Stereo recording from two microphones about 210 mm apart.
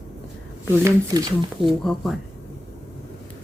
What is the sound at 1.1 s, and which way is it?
Speech, 15° right (ahead or behind).